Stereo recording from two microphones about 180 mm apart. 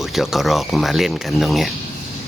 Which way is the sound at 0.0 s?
Centre (ahead or behind).